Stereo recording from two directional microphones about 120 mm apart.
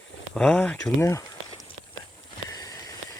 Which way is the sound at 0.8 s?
25° left (ahead or behind).